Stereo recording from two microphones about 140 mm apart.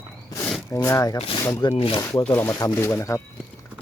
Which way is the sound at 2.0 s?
15° left (ahead or behind).